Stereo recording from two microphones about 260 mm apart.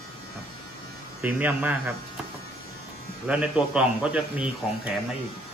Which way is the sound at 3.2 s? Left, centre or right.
Centre.